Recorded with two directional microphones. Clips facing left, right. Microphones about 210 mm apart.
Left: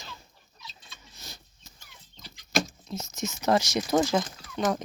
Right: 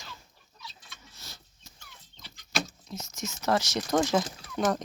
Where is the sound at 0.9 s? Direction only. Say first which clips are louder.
Left 2 dB; 15° left (ahead or behind).